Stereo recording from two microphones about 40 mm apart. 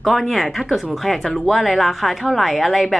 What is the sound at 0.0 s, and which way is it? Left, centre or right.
A woman's voice, centre.